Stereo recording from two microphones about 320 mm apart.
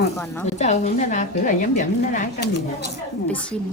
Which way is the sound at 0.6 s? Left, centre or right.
Left.